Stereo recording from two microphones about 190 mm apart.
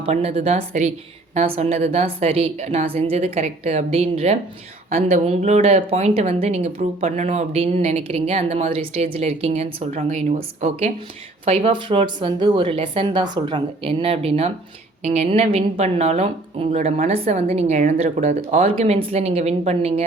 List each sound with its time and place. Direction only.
0.0 s speech: 30° right (ahead or behind)